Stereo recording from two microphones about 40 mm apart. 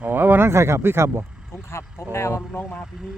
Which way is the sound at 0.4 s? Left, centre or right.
Right.